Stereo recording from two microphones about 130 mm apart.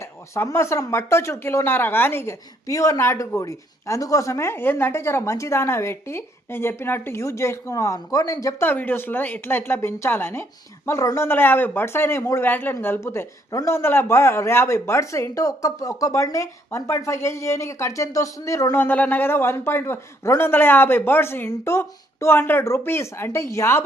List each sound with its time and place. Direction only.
0.0 s speech: 20° left (ahead or behind)